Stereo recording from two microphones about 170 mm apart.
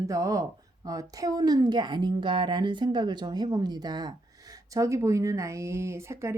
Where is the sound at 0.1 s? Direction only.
20° right (ahead or behind).